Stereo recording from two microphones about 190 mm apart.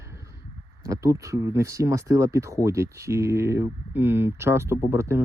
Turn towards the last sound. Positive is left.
turn(degrees=-15)  # may be behind; listen again after turning